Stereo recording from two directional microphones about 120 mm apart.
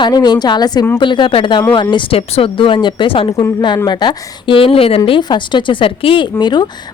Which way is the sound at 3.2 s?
30° left (ahead or behind).